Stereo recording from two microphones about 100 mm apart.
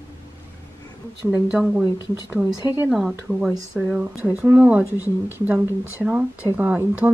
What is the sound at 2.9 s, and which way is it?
Speech, centre (ahead or behind).